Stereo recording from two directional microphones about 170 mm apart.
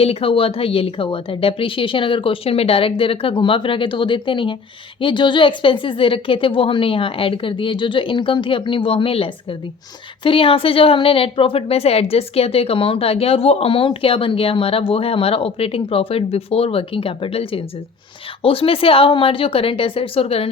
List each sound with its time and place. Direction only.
0.0 s a woman's voice: 35° left (ahead or behind)